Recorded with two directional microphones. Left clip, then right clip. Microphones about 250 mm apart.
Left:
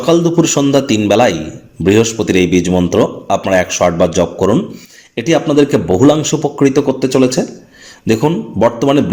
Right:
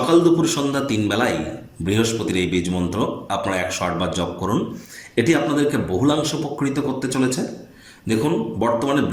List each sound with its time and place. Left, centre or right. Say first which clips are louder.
0.1 s speech: left 6 dB; left